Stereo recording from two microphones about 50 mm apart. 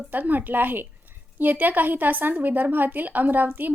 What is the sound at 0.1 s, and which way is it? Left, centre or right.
A woman's voice, right.